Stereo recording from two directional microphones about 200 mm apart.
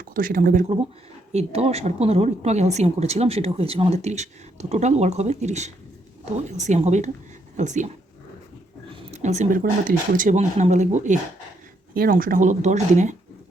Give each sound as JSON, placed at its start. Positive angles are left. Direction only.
{"t": 0.0, "sound": "speech", "side_deg": -45}
{"t": 1.3, "sound": "a woman's voice", "side_deg": -30}
{"t": 9.1, "sound": "a woman's voice", "side_deg": -35}